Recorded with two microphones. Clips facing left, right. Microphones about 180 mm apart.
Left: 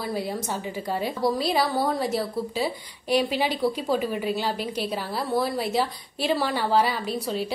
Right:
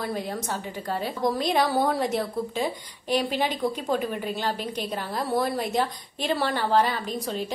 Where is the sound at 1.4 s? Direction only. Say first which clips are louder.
Right 1 dB; 5° left (ahead or behind).